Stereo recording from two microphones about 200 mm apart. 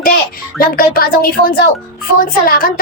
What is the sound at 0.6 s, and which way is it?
A woman's voice, 45° left (ahead or behind).